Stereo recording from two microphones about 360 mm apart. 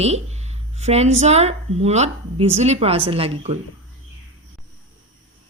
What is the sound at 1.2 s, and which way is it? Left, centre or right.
A woman's voice, centre.